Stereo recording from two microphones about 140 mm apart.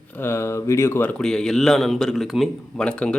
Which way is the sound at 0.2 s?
20° left (ahead or behind).